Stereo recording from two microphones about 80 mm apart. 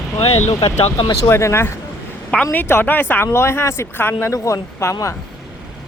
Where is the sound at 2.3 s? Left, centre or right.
Centre.